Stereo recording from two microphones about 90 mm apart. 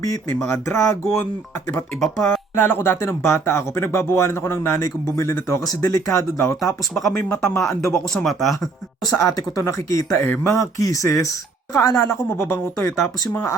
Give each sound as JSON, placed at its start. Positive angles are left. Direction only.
{"t": 0.0, "sound": "speech", "side_deg": 35}
{"t": 2.0, "sound": "speech", "side_deg": 5}
{"t": 2.6, "sound": "speech", "side_deg": 20}
{"t": 4.8, "sound": "speech", "side_deg": 35}
{"t": 7.3, "sound": "speech", "side_deg": 5}
{"t": 8.6, "sound": "speech", "side_deg": 40}